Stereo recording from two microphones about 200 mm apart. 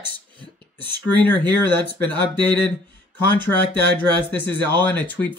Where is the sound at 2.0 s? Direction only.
10° left (ahead or behind).